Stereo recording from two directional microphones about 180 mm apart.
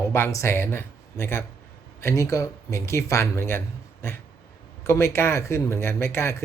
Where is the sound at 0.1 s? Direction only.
15° left (ahead or behind).